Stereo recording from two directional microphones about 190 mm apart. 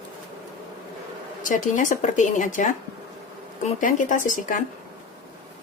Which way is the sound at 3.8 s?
45° left (ahead or behind).